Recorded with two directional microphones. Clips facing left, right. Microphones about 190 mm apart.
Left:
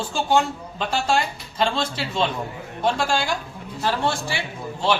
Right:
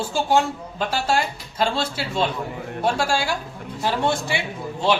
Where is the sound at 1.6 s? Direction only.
5° right (ahead or behind).